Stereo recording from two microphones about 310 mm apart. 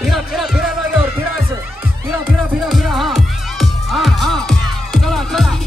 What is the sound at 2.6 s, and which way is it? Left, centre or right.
Music, centre.